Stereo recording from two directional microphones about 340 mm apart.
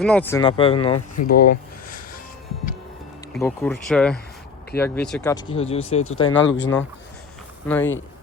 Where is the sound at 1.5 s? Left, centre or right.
Left.